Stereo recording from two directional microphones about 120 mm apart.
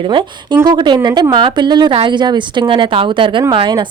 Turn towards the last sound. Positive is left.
turn(degrees=-40)  # may be behind; listen again after turning